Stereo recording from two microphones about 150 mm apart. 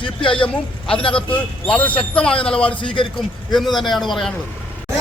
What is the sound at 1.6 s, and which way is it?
Speech, 10° left (ahead or behind).